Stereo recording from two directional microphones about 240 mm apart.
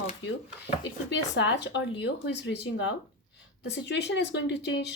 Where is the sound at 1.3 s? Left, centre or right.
Left.